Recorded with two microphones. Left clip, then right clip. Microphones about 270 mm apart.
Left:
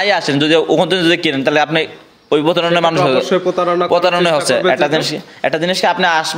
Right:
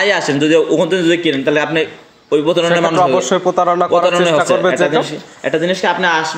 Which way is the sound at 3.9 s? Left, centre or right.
Left.